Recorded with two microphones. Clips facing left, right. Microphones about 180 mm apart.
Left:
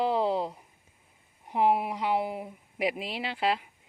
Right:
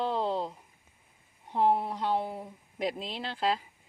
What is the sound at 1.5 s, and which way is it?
Speech, 10° left (ahead or behind).